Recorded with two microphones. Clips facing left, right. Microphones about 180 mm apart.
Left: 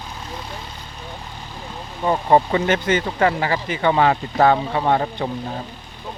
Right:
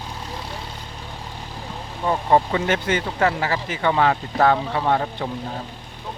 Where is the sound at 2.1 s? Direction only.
15° left (ahead or behind).